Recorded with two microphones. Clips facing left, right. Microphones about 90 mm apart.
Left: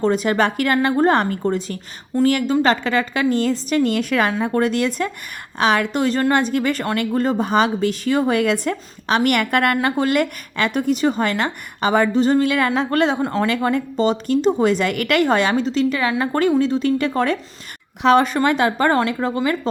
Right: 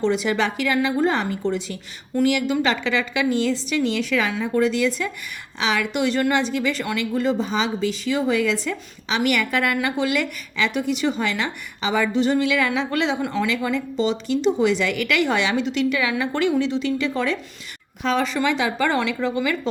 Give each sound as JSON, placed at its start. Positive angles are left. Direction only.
{"t": 0.0, "sound": "a woman's voice", "side_deg": 45}
{"t": 13.5, "sound": "a woman's voice", "side_deg": 45}
{"t": 18.0, "sound": "a woman's voice", "side_deg": 60}